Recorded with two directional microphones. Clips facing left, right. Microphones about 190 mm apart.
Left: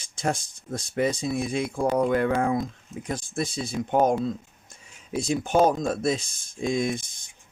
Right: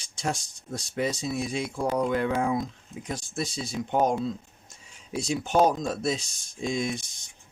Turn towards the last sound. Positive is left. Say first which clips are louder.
# left 3 dB
turn(degrees=50)  # may be behind; listen again after turning